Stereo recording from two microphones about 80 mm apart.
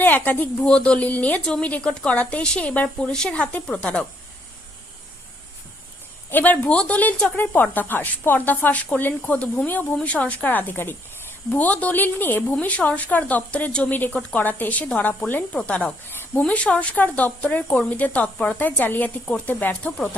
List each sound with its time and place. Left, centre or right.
0.0 s a woman's voice: left
6.3 s a woman's voice: left
16.0 s a sound: left
16.4 s a woman's voice: centre